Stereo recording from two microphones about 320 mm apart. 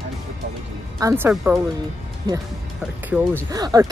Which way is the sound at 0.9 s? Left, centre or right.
Centre.